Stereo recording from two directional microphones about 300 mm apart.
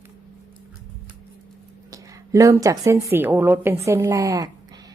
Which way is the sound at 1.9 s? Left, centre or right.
Centre.